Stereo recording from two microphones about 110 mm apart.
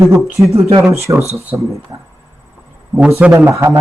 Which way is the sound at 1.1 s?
40° right (ahead or behind).